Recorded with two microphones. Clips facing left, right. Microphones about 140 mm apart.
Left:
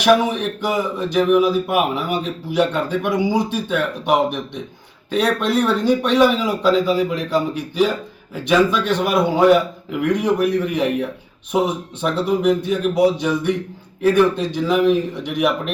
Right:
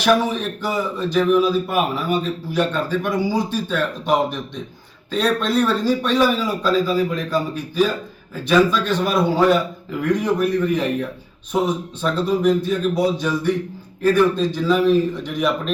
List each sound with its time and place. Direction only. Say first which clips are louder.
0.0 s speech: left 2 dB; 15° left (ahead or behind)